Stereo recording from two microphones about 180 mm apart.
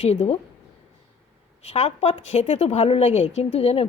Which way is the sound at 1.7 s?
40° left (ahead or behind).